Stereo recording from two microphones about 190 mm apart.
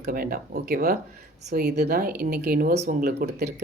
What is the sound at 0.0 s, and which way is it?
Speech, 50° right (ahead or behind).